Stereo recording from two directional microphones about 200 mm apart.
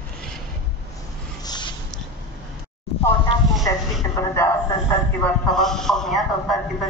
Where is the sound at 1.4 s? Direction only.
20° left (ahead or behind).